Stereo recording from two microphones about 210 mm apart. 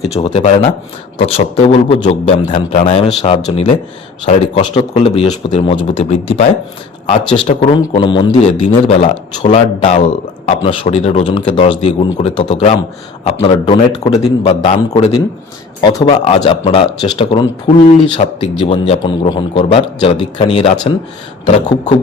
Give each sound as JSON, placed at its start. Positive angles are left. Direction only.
{"t": 0.2, "sound": "a man's voice", "side_deg": 25}
{"t": 16.0, "sound": "a man's voice", "side_deg": 25}